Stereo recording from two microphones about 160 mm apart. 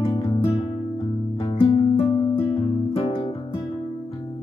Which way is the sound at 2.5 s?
35° left (ahead or behind).